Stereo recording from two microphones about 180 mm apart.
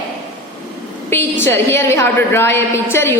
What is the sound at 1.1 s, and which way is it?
A woman's voice, 10° left (ahead or behind).